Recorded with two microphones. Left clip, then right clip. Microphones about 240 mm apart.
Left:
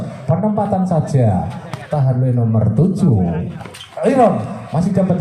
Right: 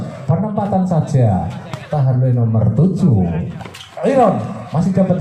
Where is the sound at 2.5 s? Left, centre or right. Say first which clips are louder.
Even; left.